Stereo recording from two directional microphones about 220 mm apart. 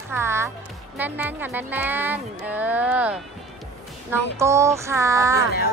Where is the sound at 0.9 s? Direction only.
10° right (ahead or behind).